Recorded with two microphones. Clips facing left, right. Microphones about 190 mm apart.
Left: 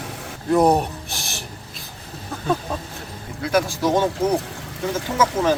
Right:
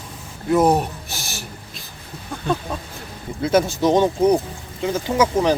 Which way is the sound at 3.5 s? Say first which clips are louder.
Right 3 dB; 20° right (ahead or behind).